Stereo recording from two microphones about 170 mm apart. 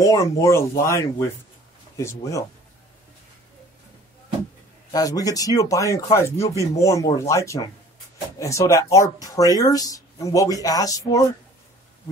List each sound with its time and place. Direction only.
0.0 s speech: 20° left (ahead or behind)
4.9 s speech: 20° left (ahead or behind)